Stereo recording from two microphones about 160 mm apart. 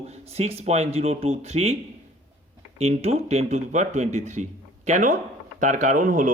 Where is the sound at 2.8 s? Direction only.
40° right (ahead or behind).